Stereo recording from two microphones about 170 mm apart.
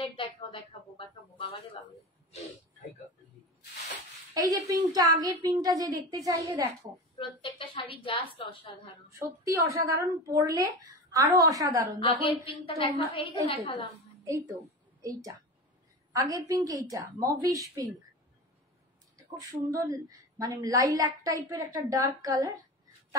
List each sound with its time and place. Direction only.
0.0 s a sound: 30° left (ahead or behind)
4.3 s a woman's voice: 20° right (ahead or behind)
7.2 s a sound: 30° left (ahead or behind)
9.2 s a woman's voice: 20° right (ahead or behind)
12.0 s a woman's voice: 30° left (ahead or behind)
14.2 s a woman's voice: 20° right (ahead or behind)
19.7 s a woman's voice: 20° right (ahead or behind)